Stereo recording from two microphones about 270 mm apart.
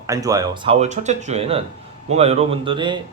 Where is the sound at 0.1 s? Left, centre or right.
Centre.